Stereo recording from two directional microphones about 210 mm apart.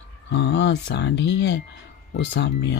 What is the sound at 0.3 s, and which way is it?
Speech, 55° left (ahead or behind).